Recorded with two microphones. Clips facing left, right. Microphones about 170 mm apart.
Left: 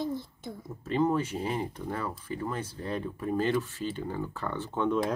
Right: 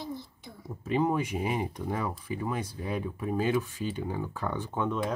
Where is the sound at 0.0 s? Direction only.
50° left (ahead or behind).